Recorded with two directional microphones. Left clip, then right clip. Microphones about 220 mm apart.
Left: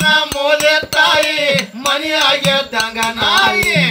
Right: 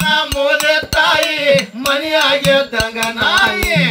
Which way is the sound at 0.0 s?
50° left (ahead or behind).